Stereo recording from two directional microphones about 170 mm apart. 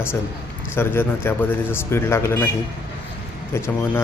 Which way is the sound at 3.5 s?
15° left (ahead or behind).